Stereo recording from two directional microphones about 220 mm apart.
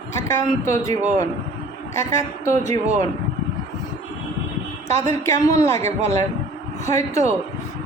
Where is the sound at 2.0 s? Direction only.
10° left (ahead or behind).